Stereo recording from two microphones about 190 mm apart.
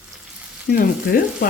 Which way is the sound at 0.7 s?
50° left (ahead or behind).